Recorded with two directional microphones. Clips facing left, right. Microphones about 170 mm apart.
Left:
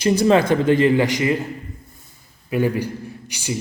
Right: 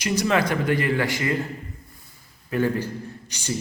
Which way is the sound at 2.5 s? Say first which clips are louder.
Left 3 dB; 15° left (ahead or behind).